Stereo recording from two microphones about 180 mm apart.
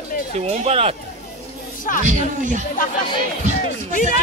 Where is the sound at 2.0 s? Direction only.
45° right (ahead or behind).